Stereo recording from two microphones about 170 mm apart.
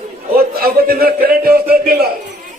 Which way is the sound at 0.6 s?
60° right (ahead or behind).